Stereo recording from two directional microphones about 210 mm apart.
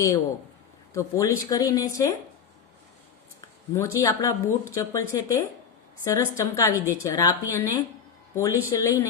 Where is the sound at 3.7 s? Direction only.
15° left (ahead or behind).